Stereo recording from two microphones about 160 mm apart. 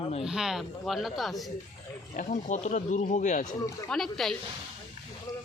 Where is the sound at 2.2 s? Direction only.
50° left (ahead or behind).